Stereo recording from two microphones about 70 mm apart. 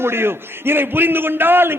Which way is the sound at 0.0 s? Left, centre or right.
Right.